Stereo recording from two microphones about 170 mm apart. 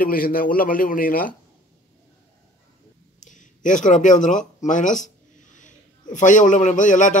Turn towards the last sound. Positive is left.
turn(degrees=50)  # may be behind; listen again after turning